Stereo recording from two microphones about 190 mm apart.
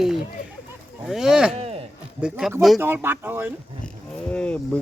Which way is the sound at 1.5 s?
30° right (ahead or behind).